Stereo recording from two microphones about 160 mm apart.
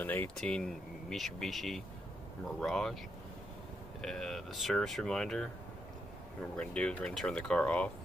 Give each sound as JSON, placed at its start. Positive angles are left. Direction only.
{"t": 0.0, "sound": "speech", "side_deg": 10}
{"t": 4.0, "sound": "speech", "side_deg": 5}
{"t": 6.5, "sound": "speech", "side_deg": 5}